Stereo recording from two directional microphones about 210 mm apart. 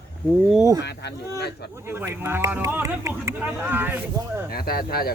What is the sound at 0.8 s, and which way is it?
Speech, 50° left (ahead or behind).